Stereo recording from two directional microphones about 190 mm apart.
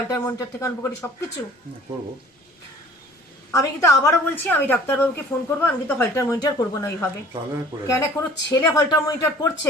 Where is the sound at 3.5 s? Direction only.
15° left (ahead or behind).